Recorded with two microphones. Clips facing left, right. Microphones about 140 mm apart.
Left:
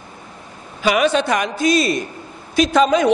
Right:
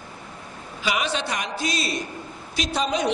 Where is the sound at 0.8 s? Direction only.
55° left (ahead or behind).